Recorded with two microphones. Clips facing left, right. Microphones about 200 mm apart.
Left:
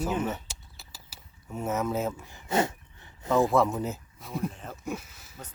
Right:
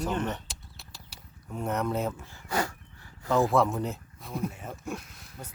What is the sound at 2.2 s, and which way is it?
Dog, 20° left (ahead or behind).